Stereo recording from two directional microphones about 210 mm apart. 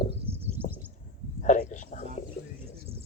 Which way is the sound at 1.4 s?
35° left (ahead or behind).